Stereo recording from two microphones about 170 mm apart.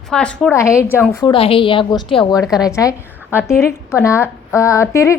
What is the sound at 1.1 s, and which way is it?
A woman's voice, 25° left (ahead or behind).